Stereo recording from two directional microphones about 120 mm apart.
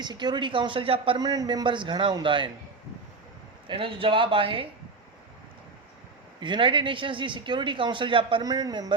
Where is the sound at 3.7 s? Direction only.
45° right (ahead or behind).